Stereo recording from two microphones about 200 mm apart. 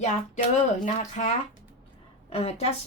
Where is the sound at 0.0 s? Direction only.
40° left (ahead or behind).